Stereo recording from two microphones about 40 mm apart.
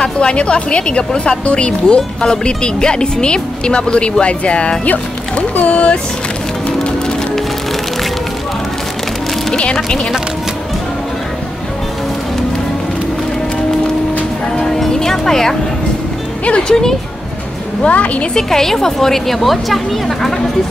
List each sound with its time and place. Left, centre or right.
0.0 s speech: left
4.8 s speech: left
15.0 s a woman's voice: centre
16.4 s speech: left
17.8 s speech: left
18.3 s a woman's voice: centre